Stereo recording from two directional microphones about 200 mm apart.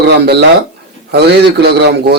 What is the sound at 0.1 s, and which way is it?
Speech, 55° right (ahead or behind).